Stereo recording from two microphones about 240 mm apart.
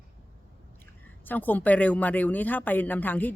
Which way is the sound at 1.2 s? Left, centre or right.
Centre.